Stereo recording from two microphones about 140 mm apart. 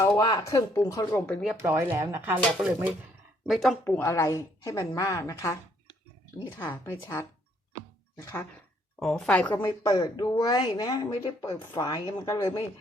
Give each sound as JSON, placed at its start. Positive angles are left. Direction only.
{"t": 0.2, "sound": "a woman's voice", "side_deg": 30}
{"t": 1.6, "sound": "speech", "side_deg": -15}
{"t": 3.4, "sound": "a woman's voice", "side_deg": 0}
{"t": 3.8, "sound": "a woman's voice", "side_deg": 15}
{"t": 9.0, "sound": "a woman's voice", "side_deg": 5}
{"t": 9.5, "sound": "a woman's voice", "side_deg": 30}